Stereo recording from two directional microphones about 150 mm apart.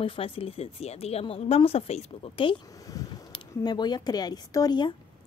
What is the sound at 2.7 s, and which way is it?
Speech, 25° left (ahead or behind).